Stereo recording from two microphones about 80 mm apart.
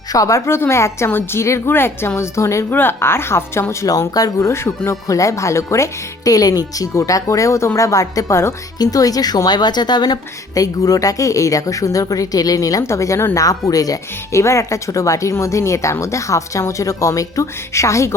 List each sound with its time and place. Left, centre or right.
0.1 s speech: left
3.8 s speech: left
8.8 s a woman's voice: left